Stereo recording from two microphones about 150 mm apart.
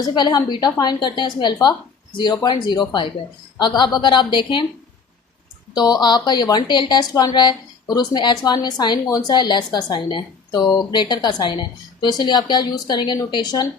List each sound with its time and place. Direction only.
0.0 s a woman's voice: 30° left (ahead or behind)
5.7 s a woman's voice: 25° left (ahead or behind)